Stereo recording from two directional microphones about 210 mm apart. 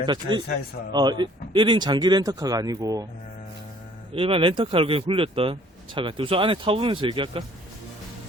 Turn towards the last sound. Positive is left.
turn(degrees=-25)  # may be behind; listen again after turning